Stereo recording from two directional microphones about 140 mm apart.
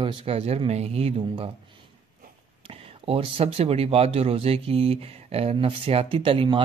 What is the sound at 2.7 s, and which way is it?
Speech, 40° right (ahead or behind).